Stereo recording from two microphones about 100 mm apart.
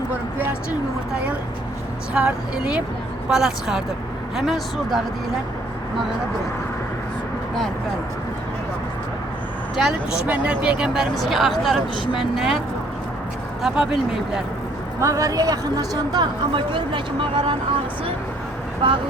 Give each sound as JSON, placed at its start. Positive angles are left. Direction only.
{"t": 2.1, "sound": "speech", "side_deg": -10}
{"t": 9.7, "sound": "speech", "side_deg": -5}
{"t": 13.6, "sound": "speech", "side_deg": -5}
{"t": 15.0, "sound": "speech", "side_deg": -35}
{"t": 16.7, "sound": "speech", "side_deg": -55}
{"t": 18.8, "sound": "speech", "side_deg": -55}